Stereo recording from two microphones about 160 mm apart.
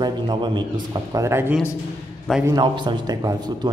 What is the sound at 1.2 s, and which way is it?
A woman's voice, 15° right (ahead or behind).